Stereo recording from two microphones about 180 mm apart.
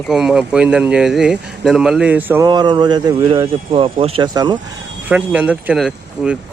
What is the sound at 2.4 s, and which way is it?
Speech, 25° right (ahead or behind).